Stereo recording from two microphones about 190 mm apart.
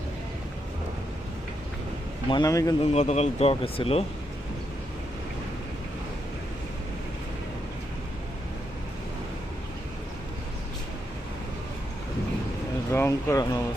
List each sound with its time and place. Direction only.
2.3 s speech: 20° left (ahead or behind)
2.9 s speech: 35° left (ahead or behind)
12.9 s a sound: 15° left (ahead or behind)